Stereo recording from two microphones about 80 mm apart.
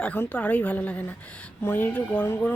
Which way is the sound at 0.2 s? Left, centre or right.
Centre.